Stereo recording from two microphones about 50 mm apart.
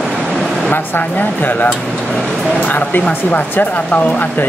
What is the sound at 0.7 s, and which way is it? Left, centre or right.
Speech, left.